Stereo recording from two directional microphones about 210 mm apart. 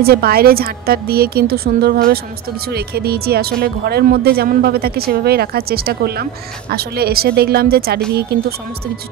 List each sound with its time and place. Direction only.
0.0 s speech: 45° right (ahead or behind)